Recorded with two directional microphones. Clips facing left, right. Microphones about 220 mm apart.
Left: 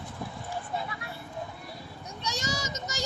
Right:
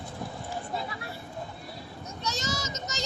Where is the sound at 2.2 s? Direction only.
15° left (ahead or behind).